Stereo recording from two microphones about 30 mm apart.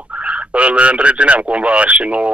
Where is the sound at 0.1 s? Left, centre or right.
Right.